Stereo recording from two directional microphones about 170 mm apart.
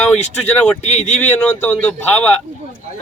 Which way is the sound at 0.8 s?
40° left (ahead or behind).